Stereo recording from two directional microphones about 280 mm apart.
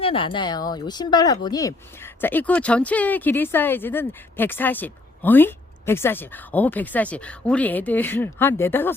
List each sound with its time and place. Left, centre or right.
0.0 s speech: centre